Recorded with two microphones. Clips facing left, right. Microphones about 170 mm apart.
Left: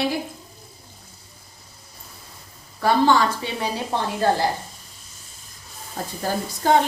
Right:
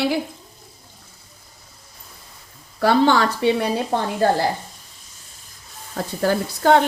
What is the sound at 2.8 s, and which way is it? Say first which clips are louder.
Speech: right 2 dB; 70° right (ahead or behind).